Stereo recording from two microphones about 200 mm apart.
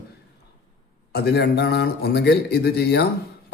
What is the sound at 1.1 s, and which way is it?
A man's voice, 55° left (ahead or behind).